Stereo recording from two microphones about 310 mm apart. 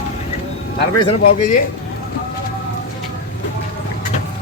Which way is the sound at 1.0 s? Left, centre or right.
Left.